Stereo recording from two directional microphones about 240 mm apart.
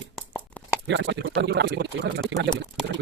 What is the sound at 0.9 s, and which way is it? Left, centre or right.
Speech, right.